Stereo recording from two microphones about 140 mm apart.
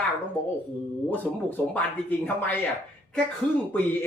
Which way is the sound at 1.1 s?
10° left (ahead or behind).